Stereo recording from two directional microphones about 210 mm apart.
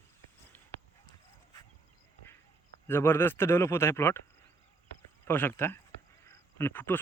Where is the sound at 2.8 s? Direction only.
10° left (ahead or behind).